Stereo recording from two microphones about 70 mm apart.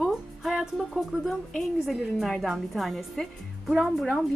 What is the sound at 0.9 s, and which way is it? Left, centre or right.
A woman's voice, centre.